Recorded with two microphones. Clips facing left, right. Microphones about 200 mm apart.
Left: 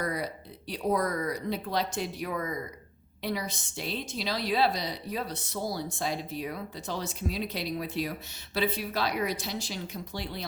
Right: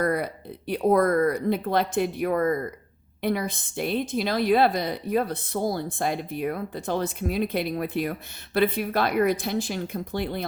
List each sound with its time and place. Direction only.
0.0 s a woman's voice: 55° right (ahead or behind)